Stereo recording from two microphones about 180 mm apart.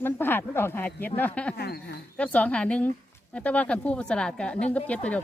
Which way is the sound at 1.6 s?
65° left (ahead or behind).